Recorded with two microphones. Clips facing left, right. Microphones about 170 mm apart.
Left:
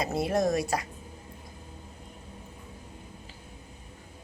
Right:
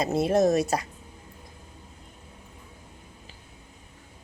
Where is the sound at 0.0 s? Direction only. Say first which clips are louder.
Right 5 dB; 25° right (ahead or behind).